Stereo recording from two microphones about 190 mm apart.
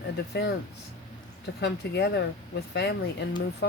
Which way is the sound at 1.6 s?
65° left (ahead or behind).